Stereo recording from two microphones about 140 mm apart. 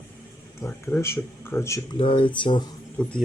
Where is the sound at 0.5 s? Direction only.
20° left (ahead or behind).